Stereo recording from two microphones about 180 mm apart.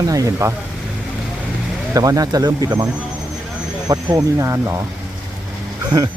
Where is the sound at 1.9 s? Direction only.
20° right (ahead or behind).